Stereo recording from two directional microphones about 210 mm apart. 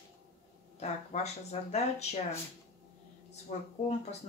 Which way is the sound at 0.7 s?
30° left (ahead or behind).